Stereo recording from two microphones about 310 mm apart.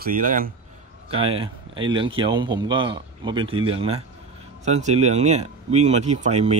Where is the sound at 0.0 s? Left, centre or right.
Right.